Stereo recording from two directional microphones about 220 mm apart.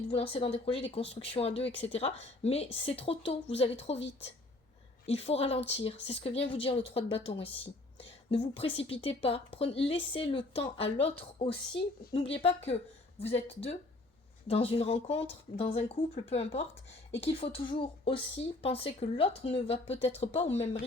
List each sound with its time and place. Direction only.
0.2 s speech: 25° left (ahead or behind)
4.0 s a woman's voice: 55° left (ahead or behind)
5.0 s a woman's voice: 25° left (ahead or behind)